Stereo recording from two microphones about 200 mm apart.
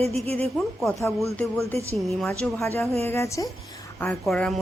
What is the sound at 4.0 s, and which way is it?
Speech, 5° left (ahead or behind).